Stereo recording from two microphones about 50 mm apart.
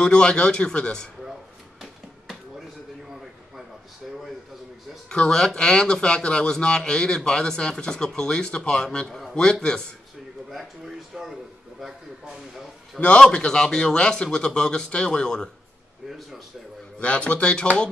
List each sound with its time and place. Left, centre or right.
0.0 s speech: centre
5.1 s a man's voice: centre
11.1 s speech: centre
13.2 s a man's voice: centre
17.0 s speech: left